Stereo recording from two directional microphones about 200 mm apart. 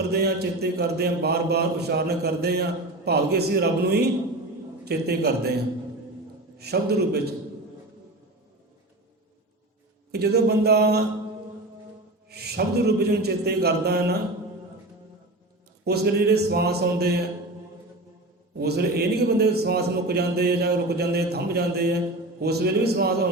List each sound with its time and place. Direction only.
0.1 s a man's voice: 55° right (ahead or behind)
6.6 s a man's voice: 55° right (ahead or behind)
10.1 s a man's voice: 55° right (ahead or behind)
12.3 s a man's voice: 55° right (ahead or behind)
15.8 s a man's voice: 55° right (ahead or behind)
18.5 s a man's voice: 50° right (ahead or behind)